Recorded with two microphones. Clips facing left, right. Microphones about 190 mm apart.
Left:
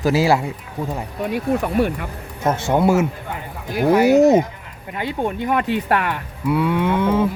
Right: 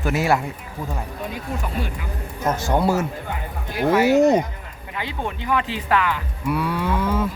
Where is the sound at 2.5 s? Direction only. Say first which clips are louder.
Left 3 dB; 25° left (ahead or behind).